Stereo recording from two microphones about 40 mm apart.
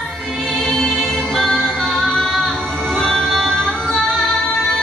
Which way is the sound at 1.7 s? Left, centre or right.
Centre.